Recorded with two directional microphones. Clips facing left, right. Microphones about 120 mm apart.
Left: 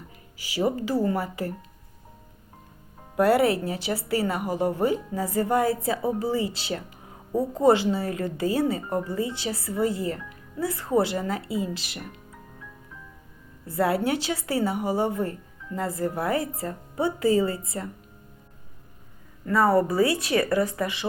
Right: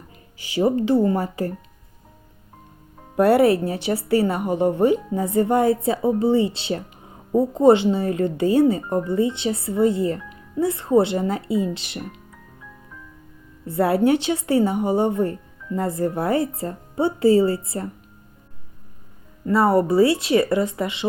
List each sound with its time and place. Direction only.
0.5 s a woman's voice: 30° right (ahead or behind)
3.2 s a woman's voice: 25° right (ahead or behind)
13.7 s a woman's voice: 25° right (ahead or behind)
19.5 s a woman's voice: 25° right (ahead or behind)